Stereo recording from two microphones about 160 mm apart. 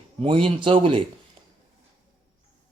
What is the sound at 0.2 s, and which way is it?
Speech, 35° right (ahead or behind).